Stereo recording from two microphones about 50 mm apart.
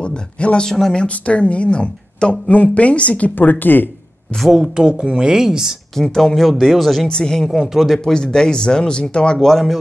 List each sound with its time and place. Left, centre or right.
0.0 s speech: left
0.7 s speech: centre
0.9 s speech: left
3.3 s speech: left
4.5 s speech: centre
5.9 s speech: centre
7.1 s speech: centre
7.6 s speech: centre
8.0 s speech: centre
9.4 s speech: centre